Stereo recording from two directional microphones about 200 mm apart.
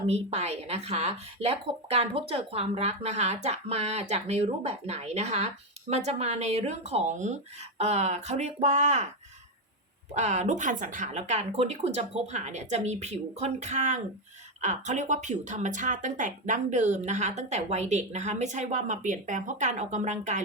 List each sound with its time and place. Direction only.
0.1 s a woman's voice: 35° right (ahead or behind)
10.2 s a woman's voice: 35° right (ahead or behind)